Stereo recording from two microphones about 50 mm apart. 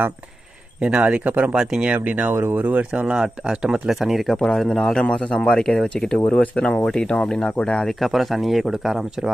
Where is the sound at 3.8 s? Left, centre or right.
Centre.